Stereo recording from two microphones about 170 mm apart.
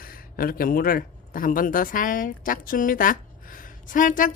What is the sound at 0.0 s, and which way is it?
A woman's voice, 60° left (ahead or behind).